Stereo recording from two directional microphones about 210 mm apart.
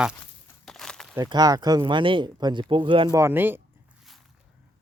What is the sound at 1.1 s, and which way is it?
Speech, 20° right (ahead or behind).